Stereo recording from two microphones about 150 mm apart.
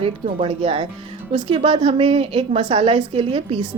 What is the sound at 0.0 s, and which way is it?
A woman's voice, 40° right (ahead or behind).